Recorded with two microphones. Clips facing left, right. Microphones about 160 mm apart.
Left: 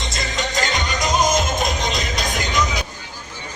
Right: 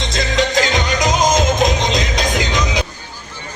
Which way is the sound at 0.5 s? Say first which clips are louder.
Right 6 dB; 90° right.